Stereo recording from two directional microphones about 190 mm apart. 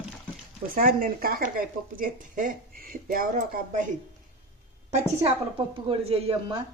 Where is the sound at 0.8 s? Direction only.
45° right (ahead or behind).